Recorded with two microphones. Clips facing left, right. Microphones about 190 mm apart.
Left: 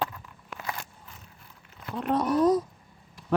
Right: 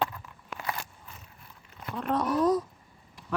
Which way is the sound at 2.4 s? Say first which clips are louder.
Left 3 dB; 20° left (ahead or behind).